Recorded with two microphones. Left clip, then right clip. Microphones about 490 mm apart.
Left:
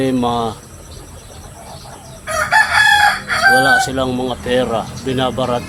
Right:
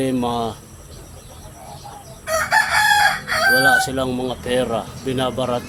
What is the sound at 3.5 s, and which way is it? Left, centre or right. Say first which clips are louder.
Speech: left 1 dB; right.